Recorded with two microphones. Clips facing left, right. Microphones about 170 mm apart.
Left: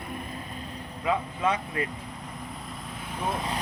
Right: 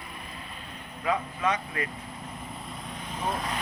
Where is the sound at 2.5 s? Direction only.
Centre (ahead or behind).